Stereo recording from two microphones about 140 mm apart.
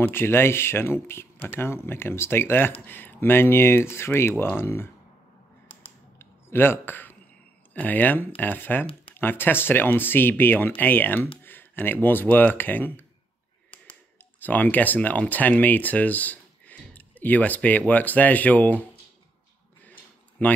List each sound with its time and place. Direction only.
0.0 s speech: 15° left (ahead or behind)
6.1 s a sound: 15° left (ahead or behind)
7.7 s speech: 10° left (ahead or behind)
14.4 s speech: 10° left (ahead or behind)